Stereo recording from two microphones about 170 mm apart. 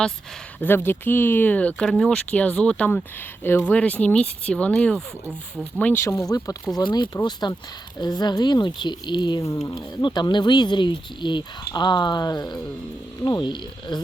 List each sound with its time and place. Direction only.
0.6 s speech: 15° left (ahead or behind)